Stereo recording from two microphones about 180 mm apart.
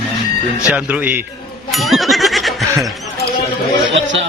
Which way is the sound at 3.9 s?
85° right.